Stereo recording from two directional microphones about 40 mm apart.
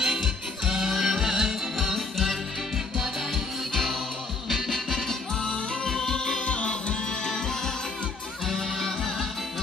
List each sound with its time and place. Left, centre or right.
0.0 s music: centre
6.4 s music: left; by 9.3 s centre